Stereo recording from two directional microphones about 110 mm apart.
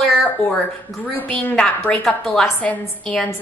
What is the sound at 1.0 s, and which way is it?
A woman's voice, 15° left (ahead or behind).